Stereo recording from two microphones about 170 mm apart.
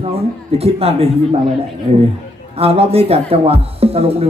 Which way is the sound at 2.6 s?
35° right (ahead or behind).